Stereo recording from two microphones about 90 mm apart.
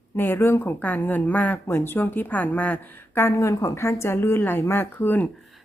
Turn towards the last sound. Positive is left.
turn(degrees=20)  # may be behind; listen again after turning